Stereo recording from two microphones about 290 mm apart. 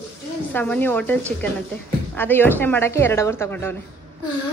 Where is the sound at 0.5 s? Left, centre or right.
Centre.